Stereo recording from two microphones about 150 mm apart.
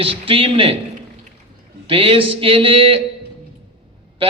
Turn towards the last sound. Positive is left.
turn(degrees=-35)  # may be behind; listen again after turning